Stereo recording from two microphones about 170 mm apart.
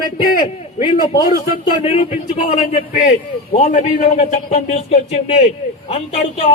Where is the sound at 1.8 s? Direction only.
40° left (ahead or behind).